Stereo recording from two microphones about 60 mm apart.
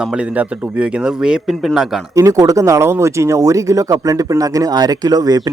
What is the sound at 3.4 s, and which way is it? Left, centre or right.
Speech, right.